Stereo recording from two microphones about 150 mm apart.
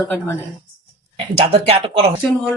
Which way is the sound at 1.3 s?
40° right (ahead or behind).